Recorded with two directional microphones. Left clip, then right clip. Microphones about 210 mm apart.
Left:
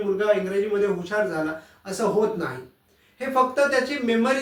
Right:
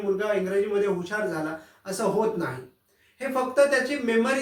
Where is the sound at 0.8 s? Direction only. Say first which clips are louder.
Left 3 dB; centre (ahead or behind).